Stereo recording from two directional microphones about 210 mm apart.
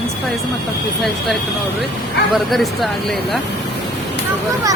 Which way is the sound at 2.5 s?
Centre (ahead or behind).